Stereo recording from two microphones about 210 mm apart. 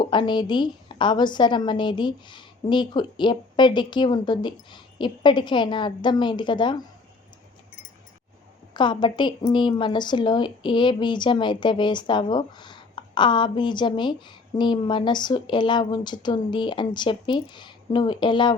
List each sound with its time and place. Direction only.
0.0 s a woman's voice: 20° left (ahead or behind)
8.7 s a woman's voice: 20° left (ahead or behind)